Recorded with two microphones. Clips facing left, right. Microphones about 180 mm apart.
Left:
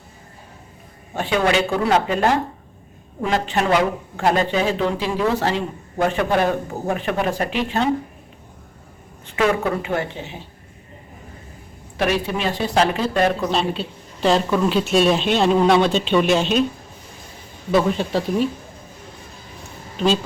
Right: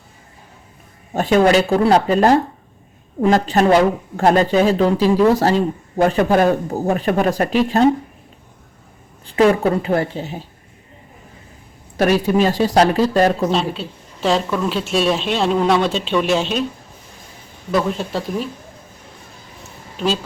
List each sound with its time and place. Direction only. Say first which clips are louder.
1.1 s speech: right 6 dB; 40° right (ahead or behind)
9.2 s speech: right 5 dB; 35° right (ahead or behind)
11.9 s speech: right 6 dB; 40° right (ahead or behind)
13.5 s a woman's voice: right 2 dB; centre (ahead or behind)
17.7 s a woman's voice: left 1 dB; centre (ahead or behind)